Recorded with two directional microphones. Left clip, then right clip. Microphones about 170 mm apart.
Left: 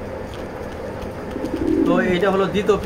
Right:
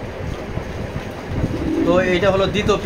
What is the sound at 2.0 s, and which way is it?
Speech, 50° right (ahead or behind).